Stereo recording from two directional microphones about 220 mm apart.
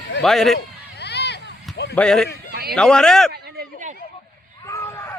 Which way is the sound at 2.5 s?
45° right (ahead or behind).